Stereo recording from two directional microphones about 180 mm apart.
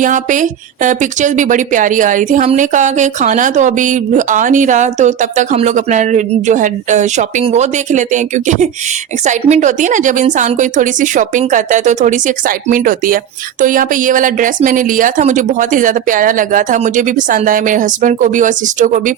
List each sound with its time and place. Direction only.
0.0 s speech: 45° right (ahead or behind)